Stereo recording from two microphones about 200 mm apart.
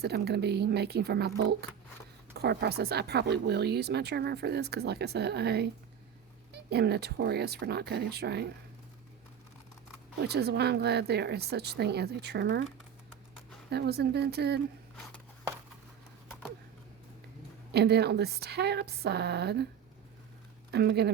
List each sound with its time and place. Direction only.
0.0 s a woman's voice: 55° right (ahead or behind)
2.3 s speech: 55° right (ahead or behind)
10.2 s speech: 55° right (ahead or behind)
13.7 s speech: 55° right (ahead or behind)
17.7 s speech: 55° right (ahead or behind)
20.7 s speech: 55° right (ahead or behind)